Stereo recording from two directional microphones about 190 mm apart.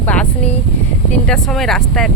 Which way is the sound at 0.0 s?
5° left (ahead or behind).